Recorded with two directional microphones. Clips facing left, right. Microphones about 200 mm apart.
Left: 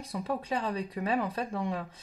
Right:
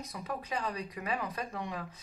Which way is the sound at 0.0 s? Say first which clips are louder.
Left 6 dB; 30° left (ahead or behind).